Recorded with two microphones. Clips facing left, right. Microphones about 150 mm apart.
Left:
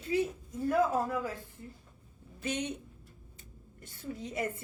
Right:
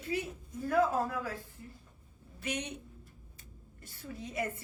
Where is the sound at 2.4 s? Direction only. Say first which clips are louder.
Left 3 dB; 25° left (ahead or behind).